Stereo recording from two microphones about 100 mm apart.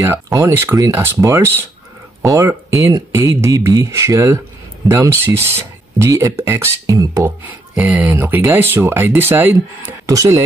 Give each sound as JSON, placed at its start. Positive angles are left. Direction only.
{"t": 0.0, "sound": "speech", "side_deg": -30}
{"t": 7.4, "sound": "speech", "side_deg": -15}
{"t": 10.0, "sound": "speech", "side_deg": -35}